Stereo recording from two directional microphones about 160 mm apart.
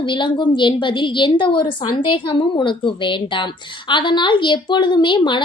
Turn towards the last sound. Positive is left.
turn(degrees=30)  # may be behind; listen again after turning